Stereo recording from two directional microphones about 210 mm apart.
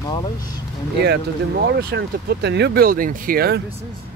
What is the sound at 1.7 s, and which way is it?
Speech, 50° right (ahead or behind).